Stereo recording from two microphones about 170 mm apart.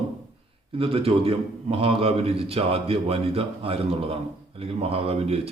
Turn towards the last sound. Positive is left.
turn(degrees=-35)  # may be behind; listen again after turning